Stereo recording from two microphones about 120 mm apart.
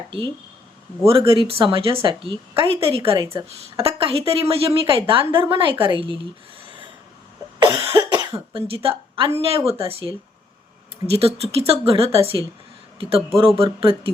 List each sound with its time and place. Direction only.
1.0 s a woman's voice: 50° right (ahead or behind)
7.6 s cough: 25° right (ahead or behind)
8.1 s cough: 35° right (ahead or behind)
8.6 s a woman's voice: 50° right (ahead or behind)